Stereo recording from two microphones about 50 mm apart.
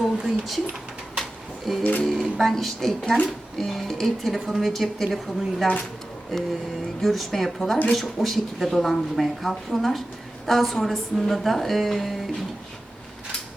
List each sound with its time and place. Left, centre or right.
0.2 s speech: centre
1.2 s a sound: centre
1.8 s speech: left
2.0 s speech: centre